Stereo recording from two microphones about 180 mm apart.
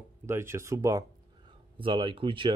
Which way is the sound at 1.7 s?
30° right (ahead or behind).